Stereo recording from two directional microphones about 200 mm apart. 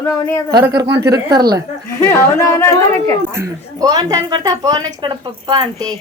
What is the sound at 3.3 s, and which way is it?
Speech, 15° right (ahead or behind).